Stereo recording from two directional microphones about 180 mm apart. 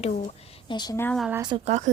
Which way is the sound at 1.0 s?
5° left (ahead or behind).